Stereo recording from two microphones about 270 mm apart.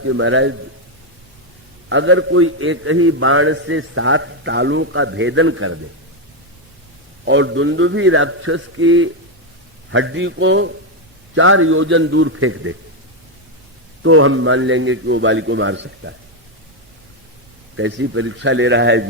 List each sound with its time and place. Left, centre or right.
0.0 s a man's voice: right
1.9 s a man's voice: right
7.3 s a man's voice: right
14.0 s a man's voice: right
17.7 s a man's voice: right